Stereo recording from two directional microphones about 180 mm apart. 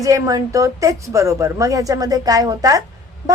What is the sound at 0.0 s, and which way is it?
Speech, 20° right (ahead or behind).